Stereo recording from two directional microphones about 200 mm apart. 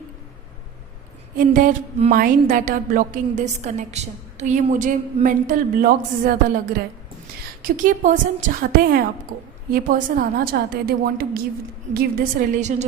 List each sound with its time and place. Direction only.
1.4 s a woman's voice: 40° right (ahead or behind)
7.6 s a woman's voice: 40° right (ahead or behind)